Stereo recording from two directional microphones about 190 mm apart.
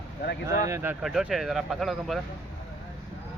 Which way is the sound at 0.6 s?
15° right (ahead or behind).